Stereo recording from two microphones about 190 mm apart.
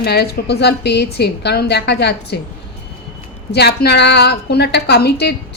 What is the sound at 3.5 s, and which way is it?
A woman's voice, 60° left (ahead or behind).